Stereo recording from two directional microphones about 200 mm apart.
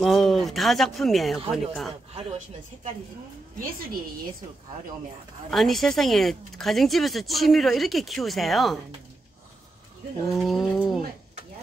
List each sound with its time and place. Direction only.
0.0 s speech: centre (ahead or behind)
2.1 s a woman's voice: 35° right (ahead or behind)
5.5 s speech: centre (ahead or behind)
10.4 s speech: centre (ahead or behind)